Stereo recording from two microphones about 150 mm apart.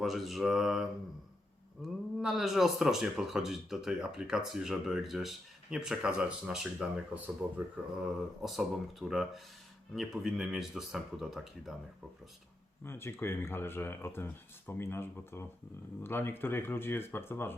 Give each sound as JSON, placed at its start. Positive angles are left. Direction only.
{"t": 0.0, "sound": "speech", "side_deg": 0}
{"t": 12.8, "sound": "speech", "side_deg": 15}